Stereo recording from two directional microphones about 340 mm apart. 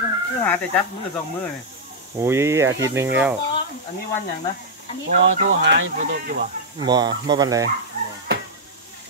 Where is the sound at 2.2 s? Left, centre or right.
Centre.